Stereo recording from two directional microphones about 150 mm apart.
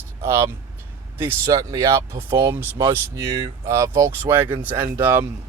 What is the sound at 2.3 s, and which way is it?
Speech, 15° right (ahead or behind).